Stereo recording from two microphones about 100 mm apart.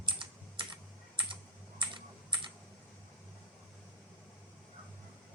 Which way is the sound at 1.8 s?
55° right (ahead or behind).